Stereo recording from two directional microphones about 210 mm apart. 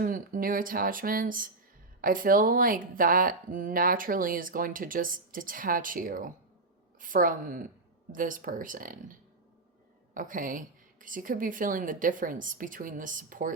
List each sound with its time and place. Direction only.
0.0 s speech: 40° right (ahead or behind)
10.2 s speech: 40° right (ahead or behind)